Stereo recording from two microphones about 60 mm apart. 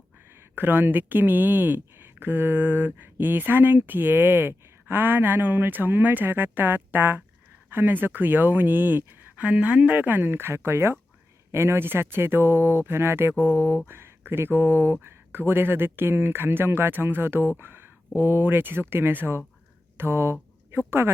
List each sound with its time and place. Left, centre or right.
0.3 s speech: right
9.4 s speech: right
17.6 s a sound: right
18.2 s speech: right